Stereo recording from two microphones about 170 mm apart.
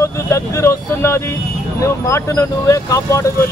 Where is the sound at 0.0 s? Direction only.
15° left (ahead or behind).